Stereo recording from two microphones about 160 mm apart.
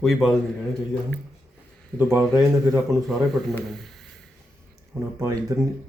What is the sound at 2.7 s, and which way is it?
A man's voice, centre (ahead or behind).